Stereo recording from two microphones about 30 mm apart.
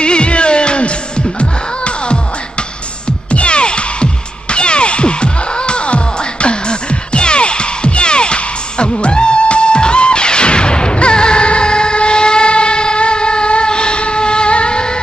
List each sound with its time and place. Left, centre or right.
0.0 s music: left
3.3 s music: left